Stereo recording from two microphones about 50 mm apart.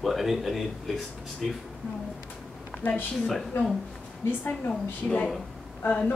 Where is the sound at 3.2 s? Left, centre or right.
Centre.